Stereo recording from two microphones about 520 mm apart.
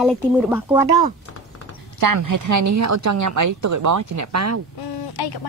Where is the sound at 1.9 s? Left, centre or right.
Right.